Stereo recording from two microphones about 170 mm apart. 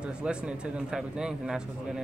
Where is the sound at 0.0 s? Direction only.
5° right (ahead or behind).